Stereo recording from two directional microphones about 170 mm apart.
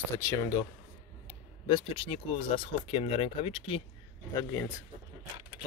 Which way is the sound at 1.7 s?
30° left (ahead or behind).